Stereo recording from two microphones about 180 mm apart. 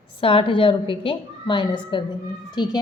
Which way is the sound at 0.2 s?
30° left (ahead or behind).